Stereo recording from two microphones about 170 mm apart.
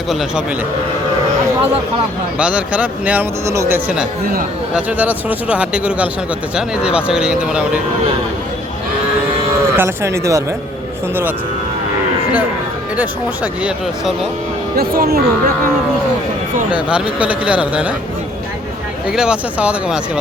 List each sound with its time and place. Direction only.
0.1 s speech: centre (ahead or behind)
2.4 s speech: 5° right (ahead or behind)
9.7 s speech: 15° right (ahead or behind)
13.0 s speech: 10° right (ahead or behind)
14.8 s speech: 65° right (ahead or behind)
16.7 s speech: 5° right (ahead or behind)
19.0 s speech: 5° right (ahead or behind)